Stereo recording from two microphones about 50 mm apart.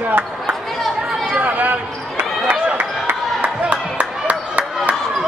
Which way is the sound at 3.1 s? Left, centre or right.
Right.